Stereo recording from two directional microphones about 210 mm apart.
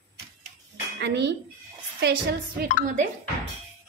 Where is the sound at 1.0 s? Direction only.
55° right (ahead or behind).